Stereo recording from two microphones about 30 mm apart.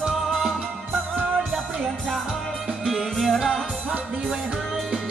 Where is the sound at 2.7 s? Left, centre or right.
Centre.